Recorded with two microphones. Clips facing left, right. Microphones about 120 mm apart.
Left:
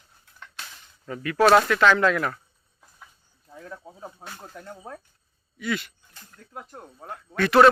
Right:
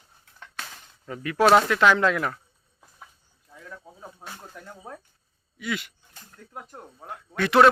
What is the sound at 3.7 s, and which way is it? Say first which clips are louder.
Speech: left 2 dB; 15° left (ahead or behind).